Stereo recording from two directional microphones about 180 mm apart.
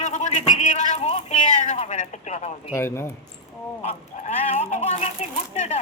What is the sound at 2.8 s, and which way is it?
Speech, 15° left (ahead or behind).